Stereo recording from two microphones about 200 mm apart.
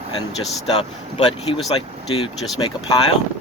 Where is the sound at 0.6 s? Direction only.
30° left (ahead or behind).